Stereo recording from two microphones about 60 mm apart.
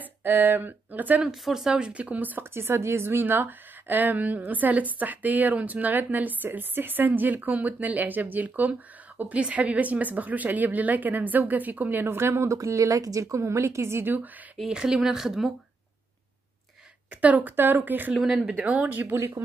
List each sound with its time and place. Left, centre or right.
0.0 s speech: right
1.4 s speech: centre
1.7 s a woman's voice: centre
2.5 s a woman's voice: right
12.5 s a woman's voice: right
14.6 s speech: centre
17.2 s a woman's voice: right
18.1 s speech: centre
18.4 s a woman's voice: right
19.1 s a woman's voice: right